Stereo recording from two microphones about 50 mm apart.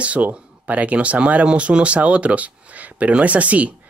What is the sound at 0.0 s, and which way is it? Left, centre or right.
Speech, right.